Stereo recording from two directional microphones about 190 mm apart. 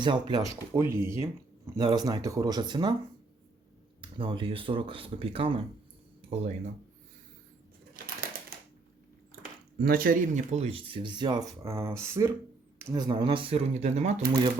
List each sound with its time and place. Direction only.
0.0 s speech: 20° right (ahead or behind)
4.0 s speech: 25° right (ahead or behind)
6.2 s a sound: 30° right (ahead or behind)
7.9 s bird: 50° right (ahead or behind)
9.7 s speech: 50° right (ahead or behind); by 14.2 s 35° right (ahead or behind)